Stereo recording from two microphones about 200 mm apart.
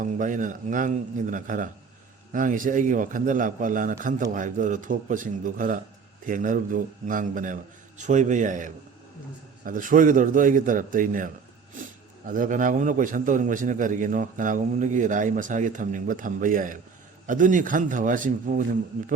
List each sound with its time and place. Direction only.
0.0 s a man's voice: 40° right (ahead or behind)